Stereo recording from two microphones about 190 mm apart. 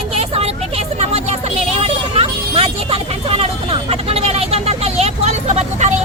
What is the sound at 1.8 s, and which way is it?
Vehicle, 30° right (ahead or behind).